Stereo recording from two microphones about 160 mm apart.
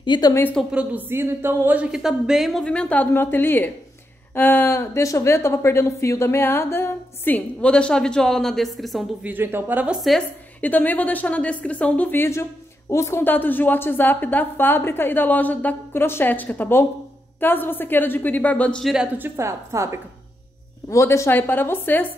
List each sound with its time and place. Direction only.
0.0 s a woman's voice: 30° left (ahead or behind)
0.3 s speech: 15° left (ahead or behind)
0.6 s a woman's voice: 5° right (ahead or behind)
9.3 s a woman's voice: 15° right (ahead or behind)
10.0 s speech: 5° left (ahead or behind)
19.1 s a woman's voice: 15° right (ahead or behind)
20.9 s speech: 20° left (ahead or behind)